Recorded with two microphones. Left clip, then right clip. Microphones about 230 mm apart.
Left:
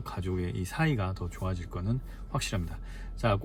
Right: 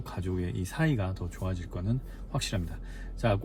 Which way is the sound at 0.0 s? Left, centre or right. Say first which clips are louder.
Left 1 dB; centre.